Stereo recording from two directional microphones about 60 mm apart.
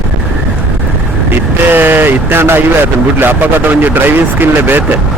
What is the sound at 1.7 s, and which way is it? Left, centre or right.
Speech, right.